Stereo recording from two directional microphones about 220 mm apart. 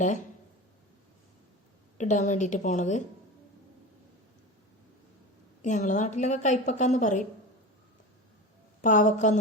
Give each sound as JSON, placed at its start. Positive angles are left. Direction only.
{"t": 2.0, "sound": "a woman's voice", "side_deg": 35}
{"t": 5.6, "sound": "a woman's voice", "side_deg": 35}
{"t": 8.8, "sound": "a woman's voice", "side_deg": 35}